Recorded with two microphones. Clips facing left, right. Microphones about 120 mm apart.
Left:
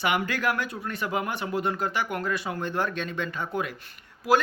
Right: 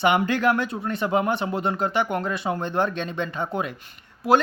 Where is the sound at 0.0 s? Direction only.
25° right (ahead or behind).